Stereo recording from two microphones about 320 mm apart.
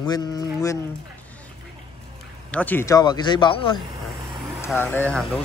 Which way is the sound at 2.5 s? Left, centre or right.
Centre.